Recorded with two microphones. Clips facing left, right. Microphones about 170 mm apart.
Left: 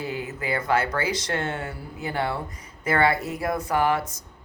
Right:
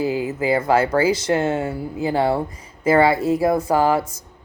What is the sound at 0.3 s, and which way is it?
A woman's voice, 25° right (ahead or behind).